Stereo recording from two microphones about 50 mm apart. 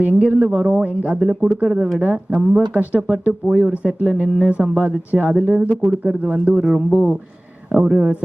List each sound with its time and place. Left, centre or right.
0.0 s speech: right
0.5 s speech: centre
0.9 s speech: right
1.2 s speech: centre
1.5 s speech: right
6.6 s speech: centre